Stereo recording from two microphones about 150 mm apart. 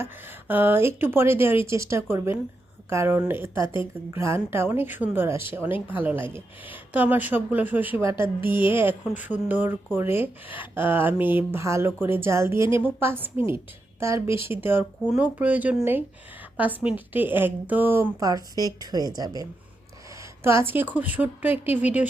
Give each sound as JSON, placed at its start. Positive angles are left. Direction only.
{"t": 0.0, "sound": "speech", "side_deg": -15}
{"t": 8.1, "sound": "speech", "side_deg": 35}
{"t": 8.9, "sound": "speech", "side_deg": -10}